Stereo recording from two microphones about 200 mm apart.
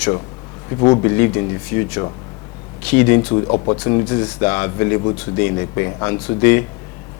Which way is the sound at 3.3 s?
25° left (ahead or behind).